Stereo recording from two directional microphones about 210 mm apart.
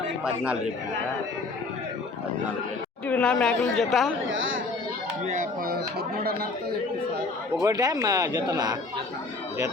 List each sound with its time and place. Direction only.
0.3 s a woman's voice: 5° right (ahead or behind)
3.1 s a woman's voice: 5° left (ahead or behind)
5.2 s speech: 35° right (ahead or behind)
7.6 s speech: 20° right (ahead or behind)